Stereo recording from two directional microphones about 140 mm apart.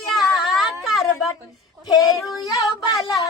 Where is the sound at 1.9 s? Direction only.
25° left (ahead or behind).